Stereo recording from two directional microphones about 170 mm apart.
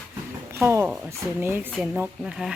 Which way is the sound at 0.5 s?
15° right (ahead or behind).